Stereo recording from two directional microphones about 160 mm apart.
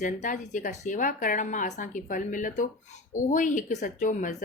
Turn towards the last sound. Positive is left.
turn(degrees=55)  # may be behind; listen again after turning